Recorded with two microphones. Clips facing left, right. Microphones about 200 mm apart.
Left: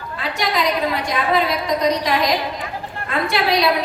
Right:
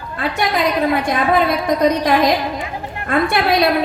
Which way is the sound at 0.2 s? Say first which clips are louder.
Right 3 dB; 55° right (ahead or behind).